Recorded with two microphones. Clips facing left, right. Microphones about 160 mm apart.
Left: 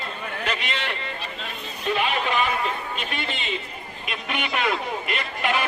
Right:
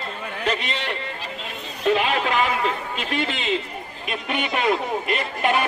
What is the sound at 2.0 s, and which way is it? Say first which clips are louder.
A man's voice: right 2 dB; 90° right.